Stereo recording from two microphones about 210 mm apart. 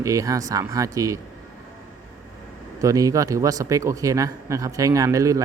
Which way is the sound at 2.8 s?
15° right (ahead or behind).